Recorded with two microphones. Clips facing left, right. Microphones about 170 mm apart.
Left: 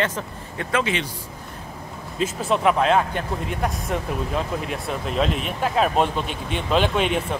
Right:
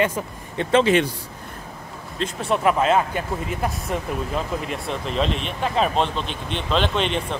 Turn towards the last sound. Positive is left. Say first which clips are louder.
# left 2 dB
turn(degrees=10)  # may be behind; listen again after turning